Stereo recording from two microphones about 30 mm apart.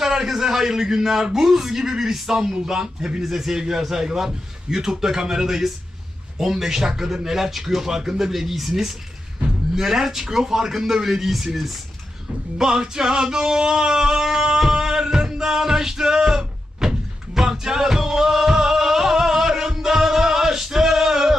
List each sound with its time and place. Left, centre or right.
0.0 s speech: centre
12.5 s music: right